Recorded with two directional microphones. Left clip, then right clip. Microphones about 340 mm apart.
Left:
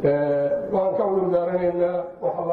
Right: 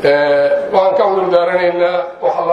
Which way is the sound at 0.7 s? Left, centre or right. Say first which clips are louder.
Right 10 dB; centre.